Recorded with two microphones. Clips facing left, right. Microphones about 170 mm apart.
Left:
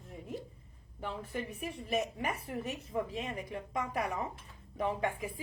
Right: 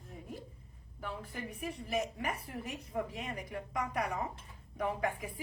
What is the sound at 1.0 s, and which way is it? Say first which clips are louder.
Speech: left 3 dB; 25° left (ahead or behind).